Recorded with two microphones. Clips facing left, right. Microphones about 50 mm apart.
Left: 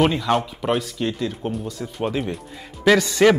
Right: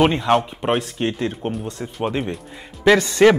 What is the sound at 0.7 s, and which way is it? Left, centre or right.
Speech, right.